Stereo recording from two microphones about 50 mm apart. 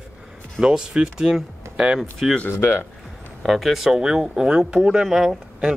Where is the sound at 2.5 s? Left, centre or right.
Left.